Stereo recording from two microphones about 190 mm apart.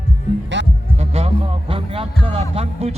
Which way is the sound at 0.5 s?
70° right (ahead or behind).